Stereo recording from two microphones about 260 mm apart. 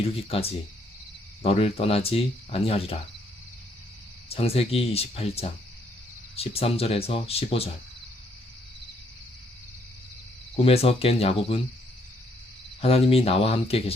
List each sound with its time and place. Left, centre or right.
1.4 s speech: left
4.3 s speech: left
10.6 s speech: left
12.8 s speech: left